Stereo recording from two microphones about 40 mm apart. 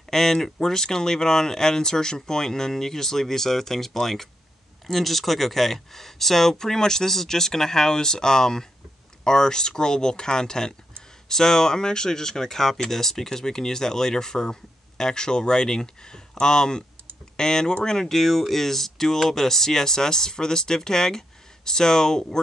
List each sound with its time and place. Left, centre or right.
0.1 s speech: centre